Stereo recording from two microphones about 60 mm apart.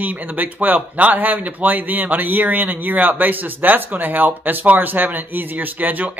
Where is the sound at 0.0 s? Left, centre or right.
Right.